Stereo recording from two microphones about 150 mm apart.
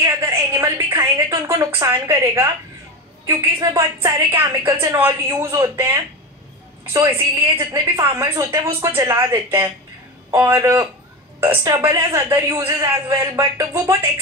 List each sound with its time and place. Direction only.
0.0 s a sound: 20° right (ahead or behind)
1.8 s a man's voice: 20° right (ahead or behind)
3.6 s a man's voice: 20° right (ahead or behind)